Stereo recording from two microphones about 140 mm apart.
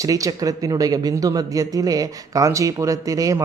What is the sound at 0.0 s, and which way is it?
Speech, 25° right (ahead or behind).